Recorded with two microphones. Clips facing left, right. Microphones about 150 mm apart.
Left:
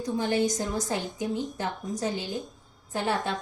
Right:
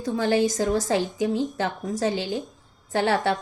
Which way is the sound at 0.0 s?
90° right.